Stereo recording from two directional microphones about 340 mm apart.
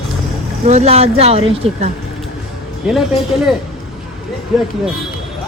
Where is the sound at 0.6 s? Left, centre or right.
Centre.